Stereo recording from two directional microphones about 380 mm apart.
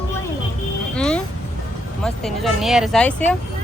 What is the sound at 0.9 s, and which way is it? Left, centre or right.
Speech, centre.